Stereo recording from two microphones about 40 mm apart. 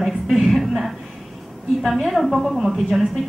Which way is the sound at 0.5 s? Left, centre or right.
Centre.